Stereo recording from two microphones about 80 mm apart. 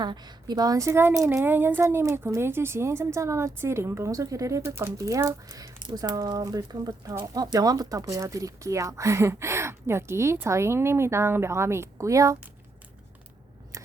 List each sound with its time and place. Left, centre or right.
0.0 s speech: right
4.6 s speech: right
5.8 s speech: right
13.7 s a sound: right